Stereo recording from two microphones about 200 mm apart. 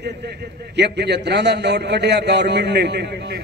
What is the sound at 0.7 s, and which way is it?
A man's voice, 55° right (ahead or behind).